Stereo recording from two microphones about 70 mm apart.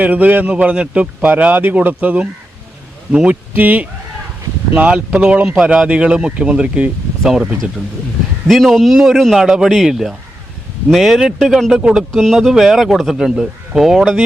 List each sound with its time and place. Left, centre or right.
0.0 s speech: right; by 7.4 s centre
8.4 s a man's voice: centre
11.8 s speech: centre
12.1 s a man's voice: centre